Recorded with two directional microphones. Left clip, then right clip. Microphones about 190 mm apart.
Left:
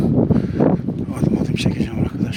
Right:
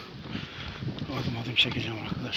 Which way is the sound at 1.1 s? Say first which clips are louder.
Left 3 dB; 35° left (ahead or behind).